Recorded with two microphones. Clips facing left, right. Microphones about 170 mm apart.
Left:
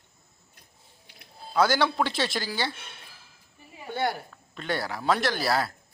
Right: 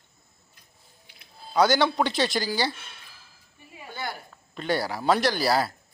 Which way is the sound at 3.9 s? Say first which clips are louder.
Left 7 dB; 60° left (ahead or behind).